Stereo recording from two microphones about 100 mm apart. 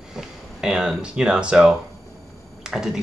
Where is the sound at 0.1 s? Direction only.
5° right (ahead or behind).